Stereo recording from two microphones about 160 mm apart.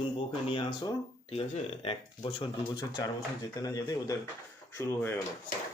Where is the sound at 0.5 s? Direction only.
30° left (ahead or behind); by 5.1 s 15° left (ahead or behind).